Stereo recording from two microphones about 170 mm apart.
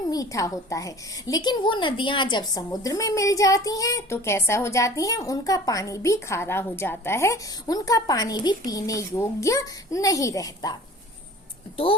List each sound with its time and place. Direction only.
0.1 s speech: 20° left (ahead or behind)